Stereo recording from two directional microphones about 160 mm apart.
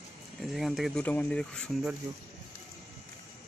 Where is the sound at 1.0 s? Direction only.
10° left (ahead or behind).